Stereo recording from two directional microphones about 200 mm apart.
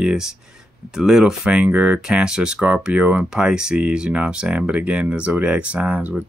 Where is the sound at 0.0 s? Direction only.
5° right (ahead or behind).